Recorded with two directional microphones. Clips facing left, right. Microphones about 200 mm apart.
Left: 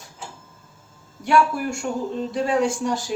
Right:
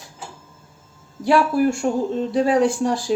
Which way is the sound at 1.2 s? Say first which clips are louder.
Right 3 dB; 35° right (ahead or behind).